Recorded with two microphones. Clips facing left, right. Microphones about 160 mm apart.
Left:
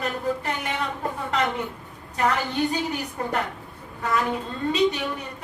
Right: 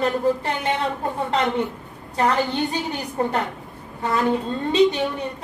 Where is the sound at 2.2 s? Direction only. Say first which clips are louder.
Right 3 dB; 30° right (ahead or behind).